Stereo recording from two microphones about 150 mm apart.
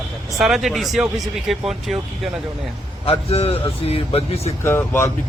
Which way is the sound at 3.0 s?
40° left (ahead or behind).